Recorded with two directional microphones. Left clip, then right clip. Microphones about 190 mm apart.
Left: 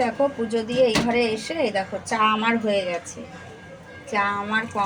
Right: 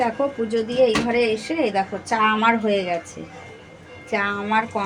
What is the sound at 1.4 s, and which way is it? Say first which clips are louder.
A woman's voice: right 2 dB; 40° right (ahead or behind).